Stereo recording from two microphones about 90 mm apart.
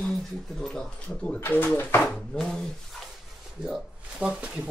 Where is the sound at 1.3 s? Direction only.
25° left (ahead or behind); by 2.6 s 5° left (ahead or behind).